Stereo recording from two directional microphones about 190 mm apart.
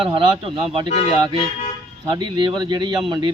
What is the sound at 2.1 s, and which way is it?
Speech, 25° right (ahead or behind).